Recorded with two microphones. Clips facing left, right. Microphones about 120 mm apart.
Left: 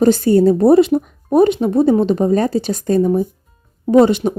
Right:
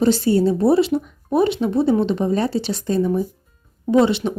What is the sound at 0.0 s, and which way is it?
Speech, 50° left (ahead or behind).